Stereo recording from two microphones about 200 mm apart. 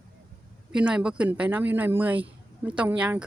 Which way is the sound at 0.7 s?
5° right (ahead or behind).